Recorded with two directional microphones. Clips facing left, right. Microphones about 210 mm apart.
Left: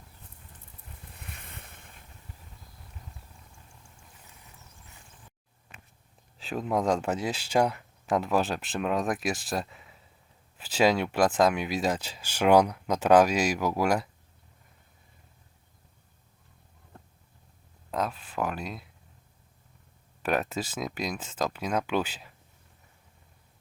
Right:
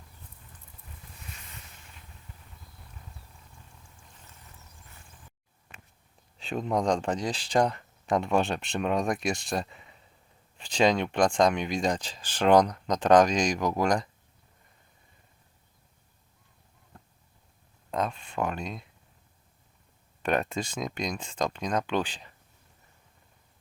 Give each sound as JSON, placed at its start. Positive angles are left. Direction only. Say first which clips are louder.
{"t": 1.2, "sound": "vehicle", "louder": "left 2 dB", "side_deg": 55}
{"t": 6.4, "sound": "speech", "louder": "even", "side_deg": 5}
{"t": 17.9, "sound": "speech", "louder": "right 1 dB", "side_deg": 5}
{"t": 20.2, "sound": "speech", "louder": "right 1 dB", "side_deg": 5}